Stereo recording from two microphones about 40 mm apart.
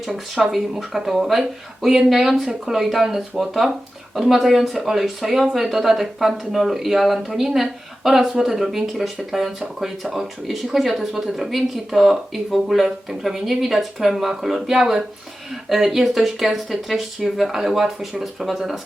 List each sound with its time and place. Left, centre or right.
0.1 s speech: centre
0.8 s speech: centre